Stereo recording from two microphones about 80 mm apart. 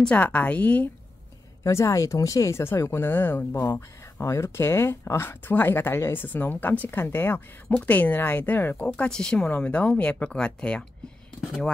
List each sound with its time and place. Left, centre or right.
0.0 s speech: centre
1.6 s speech: left; by 10.9 s centre